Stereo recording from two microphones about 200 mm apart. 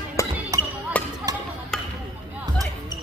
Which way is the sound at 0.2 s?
15° left (ahead or behind).